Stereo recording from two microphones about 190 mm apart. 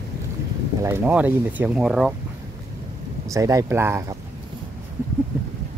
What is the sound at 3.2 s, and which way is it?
Speech, 15° right (ahead or behind).